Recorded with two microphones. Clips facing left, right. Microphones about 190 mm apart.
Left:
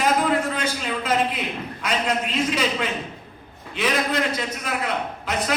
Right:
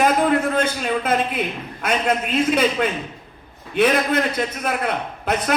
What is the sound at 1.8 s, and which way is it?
A man's voice, 50° right (ahead or behind).